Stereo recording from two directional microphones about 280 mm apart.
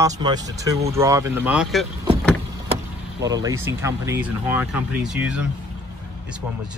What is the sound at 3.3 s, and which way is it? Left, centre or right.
Speech, centre.